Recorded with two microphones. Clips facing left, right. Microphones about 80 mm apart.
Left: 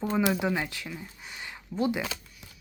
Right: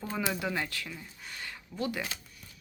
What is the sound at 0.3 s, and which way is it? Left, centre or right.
Speech, centre.